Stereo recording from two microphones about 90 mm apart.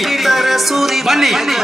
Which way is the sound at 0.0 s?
Centre (ahead or behind).